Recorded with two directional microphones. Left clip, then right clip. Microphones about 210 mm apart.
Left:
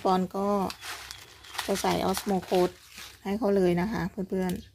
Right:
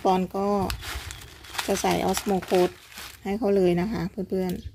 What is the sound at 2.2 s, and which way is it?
Speech, 15° right (ahead or behind).